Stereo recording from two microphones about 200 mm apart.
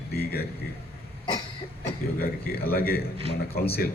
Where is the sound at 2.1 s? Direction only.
50° left (ahead or behind).